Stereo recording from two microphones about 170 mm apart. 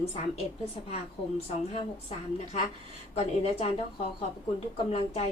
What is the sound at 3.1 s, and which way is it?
A woman's voice, 35° left (ahead or behind).